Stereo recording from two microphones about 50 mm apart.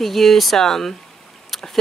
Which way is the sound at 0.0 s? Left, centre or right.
Centre.